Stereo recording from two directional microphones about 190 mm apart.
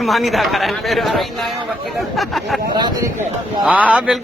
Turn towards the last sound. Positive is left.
turn(degrees=-5)  # may be behind; listen again after turning